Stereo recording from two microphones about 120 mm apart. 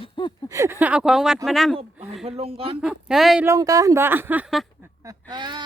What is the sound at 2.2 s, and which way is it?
Speech, 55° right (ahead or behind).